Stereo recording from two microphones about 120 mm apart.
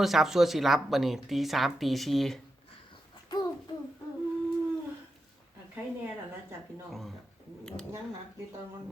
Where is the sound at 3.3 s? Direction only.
35° left (ahead or behind).